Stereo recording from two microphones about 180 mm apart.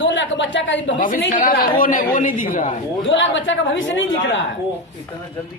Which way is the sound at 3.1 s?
90° left.